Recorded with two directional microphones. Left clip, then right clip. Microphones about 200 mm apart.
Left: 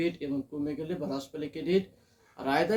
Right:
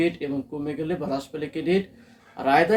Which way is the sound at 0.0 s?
10° right (ahead or behind).